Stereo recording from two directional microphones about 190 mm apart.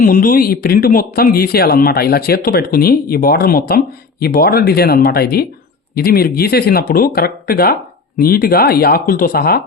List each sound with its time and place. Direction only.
0.0 s speech: 45° left (ahead or behind)